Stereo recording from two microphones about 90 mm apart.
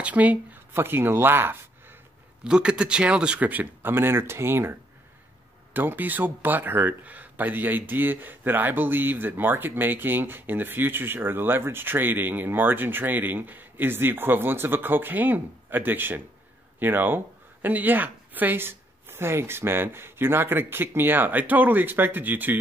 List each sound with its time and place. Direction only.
0.0 s speech: 15° right (ahead or behind)
2.4 s speech: 10° right (ahead or behind)